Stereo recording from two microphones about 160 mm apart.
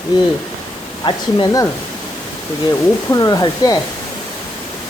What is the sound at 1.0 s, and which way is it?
Speech, 30° left (ahead or behind).